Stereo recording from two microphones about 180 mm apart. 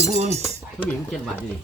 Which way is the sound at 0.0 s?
35° right (ahead or behind).